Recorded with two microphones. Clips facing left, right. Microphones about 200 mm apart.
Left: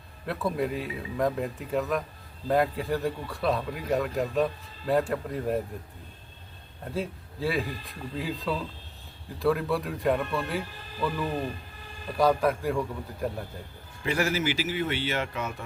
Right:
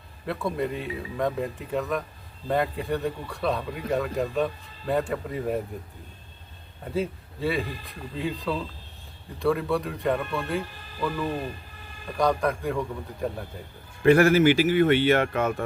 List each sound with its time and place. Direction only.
0.3 s speech: centre (ahead or behind)
6.8 s speech: centre (ahead or behind)
12.1 s speech: 5° left (ahead or behind)
14.0 s speech: 55° right (ahead or behind)